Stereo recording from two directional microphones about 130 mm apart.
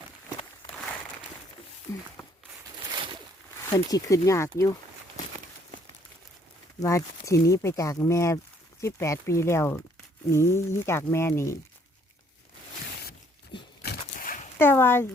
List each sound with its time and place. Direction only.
1.9 s speech: 25° left (ahead or behind)
3.7 s speech: 25° left (ahead or behind)
6.7 s speech: 25° left (ahead or behind)
14.2 s dog: 90° left
14.6 s speech: 15° left (ahead or behind)